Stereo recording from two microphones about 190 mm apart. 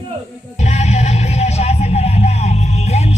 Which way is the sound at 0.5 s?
35° left (ahead or behind).